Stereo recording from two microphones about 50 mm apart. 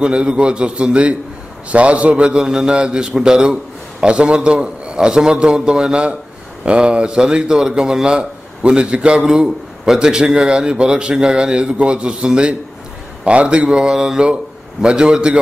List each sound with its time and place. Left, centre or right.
0.0 s a man's voice: centre
13.7 s a man's voice: centre